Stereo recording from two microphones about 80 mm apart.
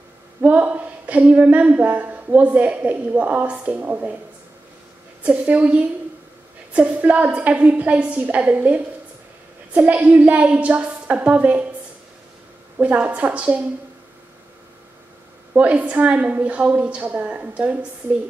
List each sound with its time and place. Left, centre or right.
0.4 s speech: centre
5.2 s a woman's voice: centre
12.7 s a woman's voice: centre
15.5 s a woman's voice: centre